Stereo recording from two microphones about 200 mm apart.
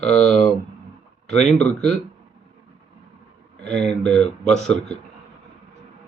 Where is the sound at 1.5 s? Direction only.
5° left (ahead or behind).